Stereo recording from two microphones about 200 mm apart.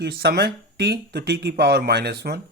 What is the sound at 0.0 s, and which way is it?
Speech, 55° right (ahead or behind).